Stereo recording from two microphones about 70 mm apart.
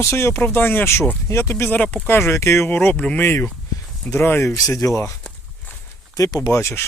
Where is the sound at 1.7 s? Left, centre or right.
Left.